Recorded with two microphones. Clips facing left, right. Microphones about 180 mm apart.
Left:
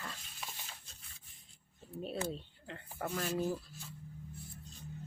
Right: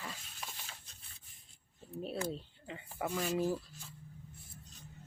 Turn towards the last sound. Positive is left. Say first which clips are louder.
# right 2 dB
turn(degrees=-5)  # may be behind; listen again after turning